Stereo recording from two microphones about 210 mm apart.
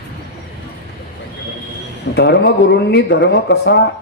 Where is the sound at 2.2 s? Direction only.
55° left (ahead or behind).